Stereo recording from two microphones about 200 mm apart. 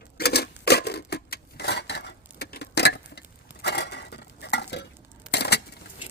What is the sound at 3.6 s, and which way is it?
Dishes, 55° left (ahead or behind).